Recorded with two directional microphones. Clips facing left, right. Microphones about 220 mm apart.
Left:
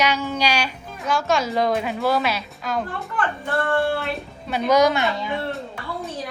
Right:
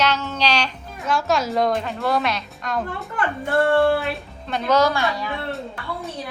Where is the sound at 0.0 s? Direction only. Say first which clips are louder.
Even; 10° left (ahead or behind).